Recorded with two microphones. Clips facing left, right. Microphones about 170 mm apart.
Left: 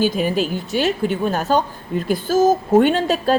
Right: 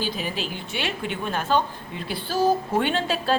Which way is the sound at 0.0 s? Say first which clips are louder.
Left 10 dB; 45° left (ahead or behind).